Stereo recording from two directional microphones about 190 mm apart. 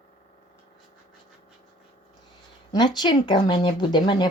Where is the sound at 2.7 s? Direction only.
20° left (ahead or behind).